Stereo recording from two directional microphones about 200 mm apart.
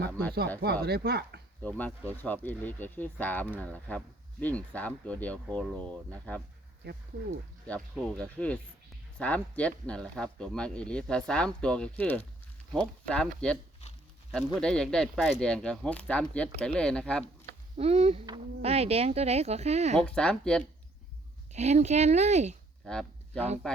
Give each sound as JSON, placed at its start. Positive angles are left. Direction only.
{"t": 0.1, "sound": "speech", "side_deg": 5}
{"t": 0.6, "sound": "speech", "side_deg": -50}
{"t": 1.6, "sound": "speech", "side_deg": 10}
{"t": 6.8, "sound": "speech", "side_deg": -55}
{"t": 8.1, "sound": "speech", "side_deg": 5}
{"t": 17.7, "sound": "speech", "side_deg": -30}
{"t": 20.1, "sound": "speech", "side_deg": 5}
{"t": 21.5, "sound": "speech", "side_deg": -35}
{"t": 22.9, "sound": "a sound", "side_deg": 5}